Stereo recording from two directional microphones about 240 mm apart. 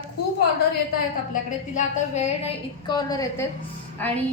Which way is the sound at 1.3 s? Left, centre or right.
Left.